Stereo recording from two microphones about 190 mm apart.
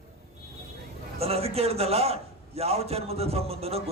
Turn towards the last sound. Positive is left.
turn(degrees=-30)  # may be behind; listen again after turning